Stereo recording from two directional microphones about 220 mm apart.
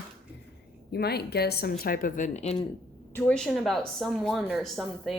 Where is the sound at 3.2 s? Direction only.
5° left (ahead or behind).